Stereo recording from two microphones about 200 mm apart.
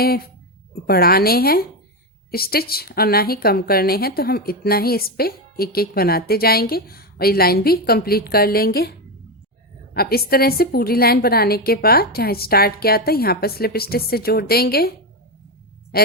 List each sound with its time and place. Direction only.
0.7 s a woman's voice: 50° left (ahead or behind)